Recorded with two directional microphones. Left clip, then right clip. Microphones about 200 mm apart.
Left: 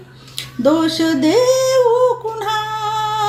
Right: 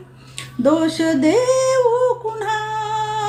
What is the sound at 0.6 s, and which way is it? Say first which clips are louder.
Music: left 2 dB; 5° right (ahead or behind).